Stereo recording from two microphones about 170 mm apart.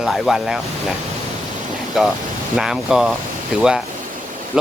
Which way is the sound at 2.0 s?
Centre (ahead or behind).